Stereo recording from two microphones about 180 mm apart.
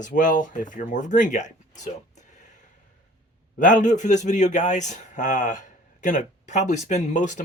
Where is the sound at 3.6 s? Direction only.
45° left (ahead or behind).